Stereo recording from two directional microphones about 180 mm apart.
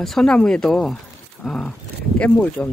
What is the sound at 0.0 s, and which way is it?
Speech, 5° left (ahead or behind).